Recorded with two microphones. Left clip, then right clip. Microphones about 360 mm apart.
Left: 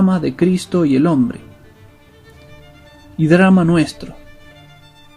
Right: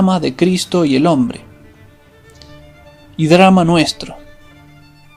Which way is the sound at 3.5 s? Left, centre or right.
Right.